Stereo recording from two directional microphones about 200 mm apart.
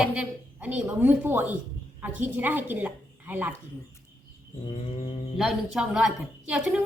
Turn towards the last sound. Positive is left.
turn(degrees=-5)  # may be behind; listen again after turning